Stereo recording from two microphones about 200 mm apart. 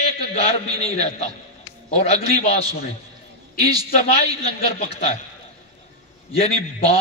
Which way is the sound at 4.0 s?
30° left (ahead or behind).